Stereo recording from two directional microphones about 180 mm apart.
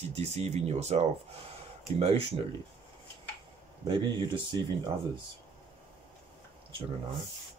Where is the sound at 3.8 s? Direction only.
25° right (ahead or behind).